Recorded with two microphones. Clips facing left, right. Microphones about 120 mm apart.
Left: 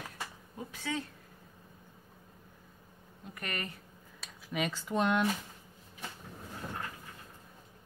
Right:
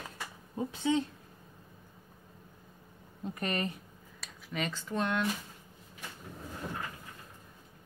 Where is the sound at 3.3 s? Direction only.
25° right (ahead or behind).